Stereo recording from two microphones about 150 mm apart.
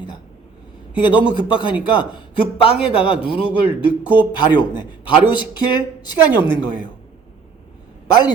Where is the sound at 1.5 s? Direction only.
35° left (ahead or behind).